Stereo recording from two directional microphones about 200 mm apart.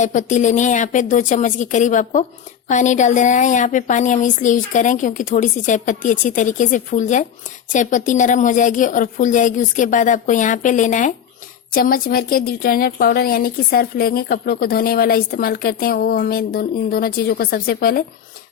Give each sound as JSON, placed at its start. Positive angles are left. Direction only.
{"t": 0.0, "sound": "a woman's voice", "side_deg": 40}